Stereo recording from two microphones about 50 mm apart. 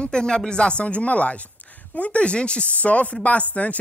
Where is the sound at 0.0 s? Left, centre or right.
Centre.